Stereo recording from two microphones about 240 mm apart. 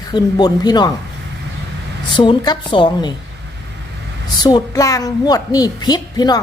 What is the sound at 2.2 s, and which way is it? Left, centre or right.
Speech, centre.